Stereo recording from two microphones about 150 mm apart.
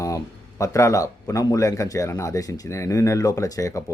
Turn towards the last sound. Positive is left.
turn(degrees=20)  # may be behind; listen again after turning